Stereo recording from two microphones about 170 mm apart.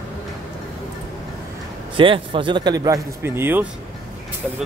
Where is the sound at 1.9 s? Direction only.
30° right (ahead or behind); by 3.6 s 15° right (ahead or behind).